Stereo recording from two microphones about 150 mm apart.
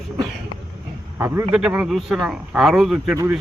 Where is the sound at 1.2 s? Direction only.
15° right (ahead or behind).